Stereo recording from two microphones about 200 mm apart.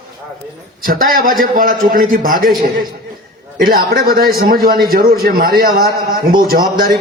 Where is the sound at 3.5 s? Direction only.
45° right (ahead or behind).